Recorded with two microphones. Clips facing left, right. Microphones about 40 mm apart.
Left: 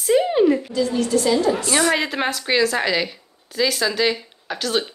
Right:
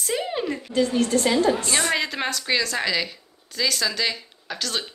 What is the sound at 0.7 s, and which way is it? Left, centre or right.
Speech, right.